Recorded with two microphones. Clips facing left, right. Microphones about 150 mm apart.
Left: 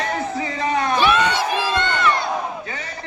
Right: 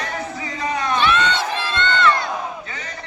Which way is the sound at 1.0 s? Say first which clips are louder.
Even; 10° left (ahead or behind).